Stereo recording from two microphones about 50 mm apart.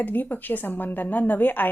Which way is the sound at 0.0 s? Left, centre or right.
Left.